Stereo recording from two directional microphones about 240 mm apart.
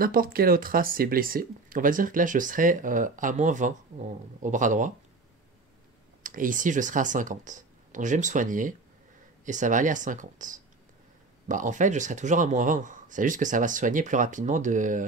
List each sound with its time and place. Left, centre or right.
0.0 s speech: right
6.2 s speech: right